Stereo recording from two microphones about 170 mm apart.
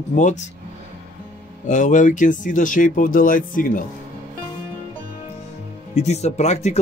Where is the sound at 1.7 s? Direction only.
50° left (ahead or behind).